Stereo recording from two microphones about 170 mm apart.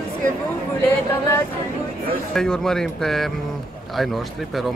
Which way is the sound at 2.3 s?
5° left (ahead or behind).